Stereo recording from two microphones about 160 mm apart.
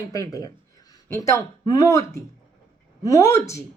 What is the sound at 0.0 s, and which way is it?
Speech, 20° left (ahead or behind).